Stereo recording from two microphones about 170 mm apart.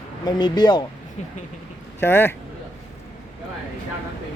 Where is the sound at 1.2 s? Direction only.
40° left (ahead or behind).